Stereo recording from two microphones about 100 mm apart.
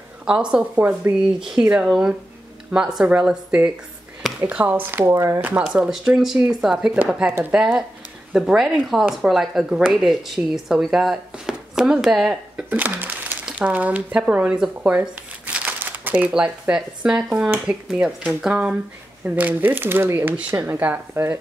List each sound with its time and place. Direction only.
0.2 s speech: 10° right (ahead or behind)
1.4 s speech: 5° right (ahead or behind)
5.0 s speech: 35° right (ahead or behind)
5.7 s speech: 10° right (ahead or behind)